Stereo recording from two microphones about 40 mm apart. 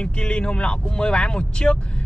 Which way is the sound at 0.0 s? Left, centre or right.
Left.